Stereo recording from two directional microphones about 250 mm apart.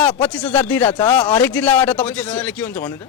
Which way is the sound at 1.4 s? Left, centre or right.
Centre.